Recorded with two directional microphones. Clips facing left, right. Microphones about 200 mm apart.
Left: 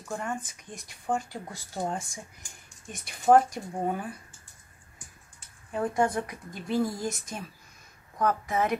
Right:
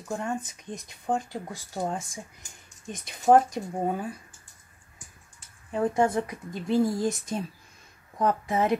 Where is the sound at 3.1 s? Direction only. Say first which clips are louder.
Right 1 dB; 20° right (ahead or behind).